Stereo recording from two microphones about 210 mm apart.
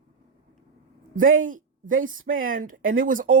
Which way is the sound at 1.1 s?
40° right (ahead or behind).